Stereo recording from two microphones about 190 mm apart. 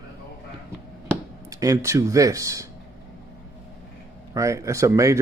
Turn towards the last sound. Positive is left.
turn(degrees=-15)  # may be behind; listen again after turning